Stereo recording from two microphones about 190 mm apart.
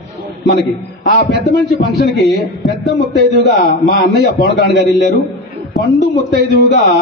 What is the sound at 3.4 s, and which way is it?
A man's voice, 60° left (ahead or behind).